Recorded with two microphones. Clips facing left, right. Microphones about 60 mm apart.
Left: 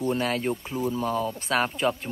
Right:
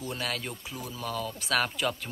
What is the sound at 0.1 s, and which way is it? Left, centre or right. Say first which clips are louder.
Speech: left 8 dB; left.